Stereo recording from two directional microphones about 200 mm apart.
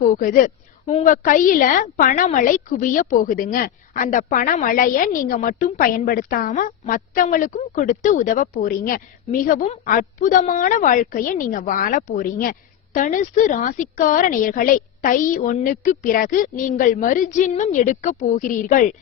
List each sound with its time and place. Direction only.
0.0 s a woman's voice: 45° left (ahead or behind)